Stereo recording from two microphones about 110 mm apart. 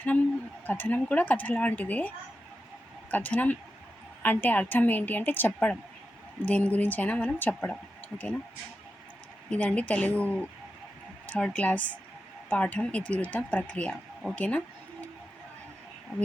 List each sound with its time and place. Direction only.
0.6 s speech: 15° left (ahead or behind)
9.5 s speech: 10° left (ahead or behind)